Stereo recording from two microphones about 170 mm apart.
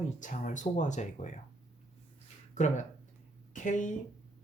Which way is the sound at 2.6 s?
45° left (ahead or behind).